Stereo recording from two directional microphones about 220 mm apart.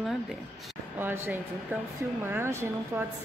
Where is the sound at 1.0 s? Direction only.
10° right (ahead or behind).